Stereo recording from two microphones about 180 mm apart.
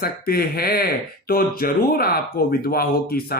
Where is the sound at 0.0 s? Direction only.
55° left (ahead or behind).